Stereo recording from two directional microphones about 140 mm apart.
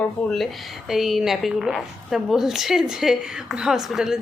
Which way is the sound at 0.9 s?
Centre (ahead or behind).